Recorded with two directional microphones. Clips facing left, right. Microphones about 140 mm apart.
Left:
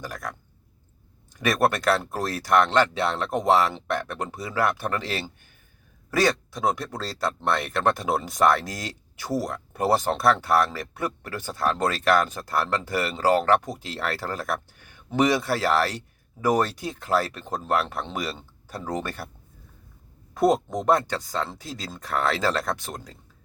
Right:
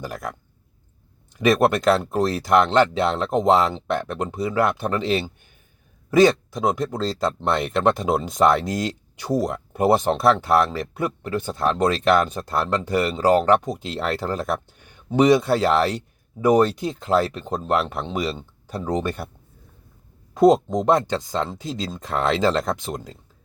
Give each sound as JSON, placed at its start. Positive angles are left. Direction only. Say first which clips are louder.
{"t": 0.0, "sound": "speech", "louder": "right 4 dB", "side_deg": -25}
{"t": 20.3, "sound": "speech", "louder": "right 6 dB", "side_deg": -20}